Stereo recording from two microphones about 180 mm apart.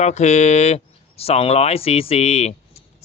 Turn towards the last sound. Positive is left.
turn(degrees=35)  # may be behind; listen again after turning